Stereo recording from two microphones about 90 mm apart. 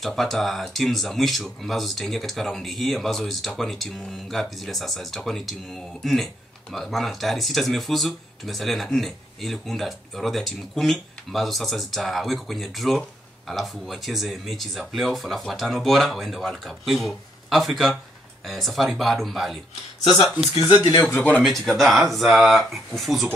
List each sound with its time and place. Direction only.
0.0 s speech: centre (ahead or behind)
20.6 s speech: 50° left (ahead or behind)
21.6 s speech: centre (ahead or behind)